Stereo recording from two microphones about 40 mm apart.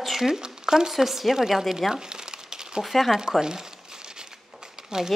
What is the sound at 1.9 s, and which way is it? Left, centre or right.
Crumpling, centre.